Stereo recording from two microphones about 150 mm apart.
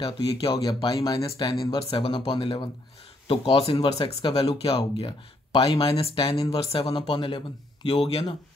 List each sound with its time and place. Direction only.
0.0 s speech: 35° left (ahead or behind)
1.9 s speech: 40° left (ahead or behind)